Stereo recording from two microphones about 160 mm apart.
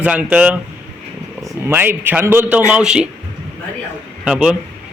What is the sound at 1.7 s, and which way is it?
Speech, 15° right (ahead or behind).